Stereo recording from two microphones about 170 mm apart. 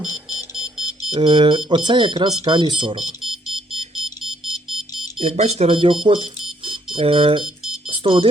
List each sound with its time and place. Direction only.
0.3 s a sound: 5° right (ahead or behind)
1.1 s speech: 25° right (ahead or behind)
3.2 s alarm: centre (ahead or behind)
5.2 s speech: 40° right (ahead or behind)
6.7 s alarm clock: 30° right (ahead or behind)
7.9 s music: 30° right (ahead or behind)